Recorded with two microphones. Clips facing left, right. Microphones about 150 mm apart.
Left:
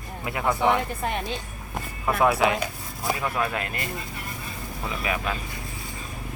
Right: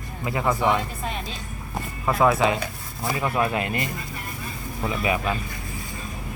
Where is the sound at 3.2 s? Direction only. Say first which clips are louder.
Right 7 dB; 10° right (ahead or behind).